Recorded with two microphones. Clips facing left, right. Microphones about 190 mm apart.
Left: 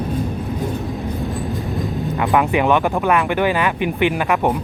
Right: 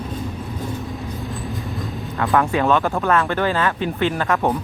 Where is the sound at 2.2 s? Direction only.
15° left (ahead or behind).